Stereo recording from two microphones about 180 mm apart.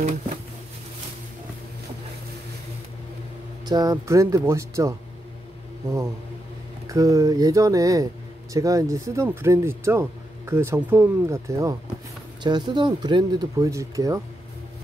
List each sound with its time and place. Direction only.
3.6 s speech: 20° right (ahead or behind)
6.9 s speech: 20° right (ahead or behind)